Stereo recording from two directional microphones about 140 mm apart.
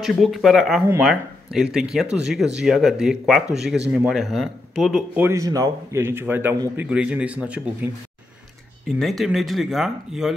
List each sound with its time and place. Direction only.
0.0 s speech: centre (ahead or behind)
5.3 s speech: 25° right (ahead or behind); by 10.3 s centre (ahead or behind)